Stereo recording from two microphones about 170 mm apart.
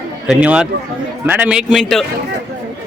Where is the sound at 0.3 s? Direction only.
5° right (ahead or behind).